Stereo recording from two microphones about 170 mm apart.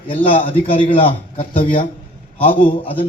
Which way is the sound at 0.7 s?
30° left (ahead or behind).